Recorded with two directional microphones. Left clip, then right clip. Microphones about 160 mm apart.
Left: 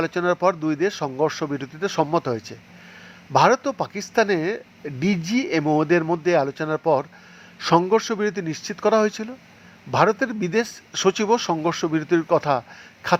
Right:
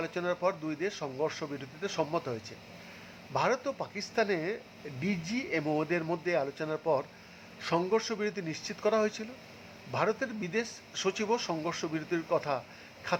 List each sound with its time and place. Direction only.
0.0 s speech: 35° left (ahead or behind)